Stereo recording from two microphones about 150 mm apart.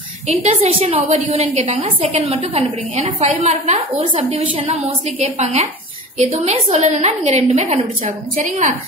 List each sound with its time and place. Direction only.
0.3 s a woman's voice: 50° right (ahead or behind)